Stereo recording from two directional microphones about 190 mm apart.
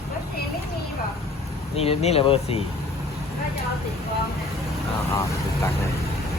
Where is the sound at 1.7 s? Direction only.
30° left (ahead or behind).